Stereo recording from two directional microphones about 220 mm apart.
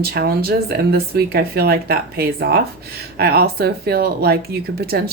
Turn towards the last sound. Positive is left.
turn(degrees=-45)  # may be behind; listen again after turning